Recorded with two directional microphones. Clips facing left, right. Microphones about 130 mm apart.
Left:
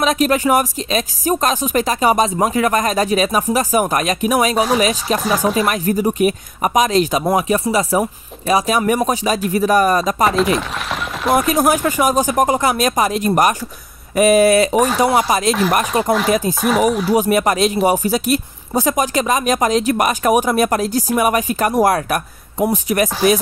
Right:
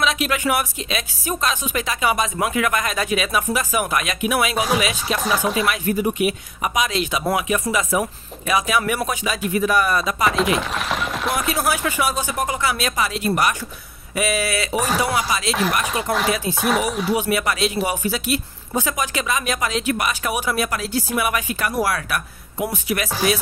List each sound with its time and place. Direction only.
0.0 s speech: 40° left (ahead or behind)
10.3 s chopping: centre (ahead or behind)
11.3 s speech: 45° left (ahead or behind)
16.6 s speech: centre (ahead or behind)
17.1 s speech: 40° left (ahead or behind)